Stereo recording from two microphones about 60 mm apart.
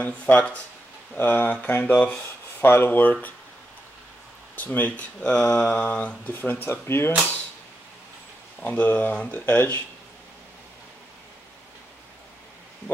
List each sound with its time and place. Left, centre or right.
0.0 s speech: left
4.6 s speech: left
8.6 s speech: left